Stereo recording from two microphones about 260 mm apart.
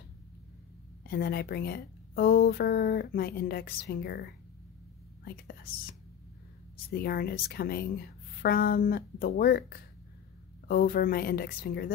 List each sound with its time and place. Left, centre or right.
1.0 s speech: left
6.9 s speech: left